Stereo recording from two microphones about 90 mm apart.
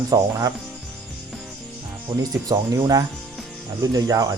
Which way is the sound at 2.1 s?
50° right (ahead or behind).